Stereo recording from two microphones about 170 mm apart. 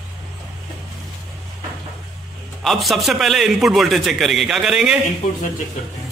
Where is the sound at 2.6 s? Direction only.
Centre (ahead or behind).